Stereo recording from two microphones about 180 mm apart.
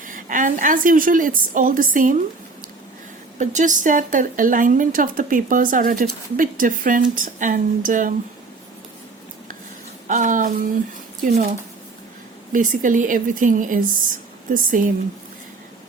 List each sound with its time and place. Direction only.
0.0 s speech: 45° right (ahead or behind)
3.3 s speech: 40° right (ahead or behind)
10.1 s speech: 45° right (ahead or behind)
12.5 s speech: 45° right (ahead or behind)